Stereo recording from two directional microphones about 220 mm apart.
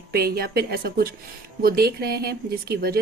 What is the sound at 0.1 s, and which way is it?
Speech, 45° right (ahead or behind).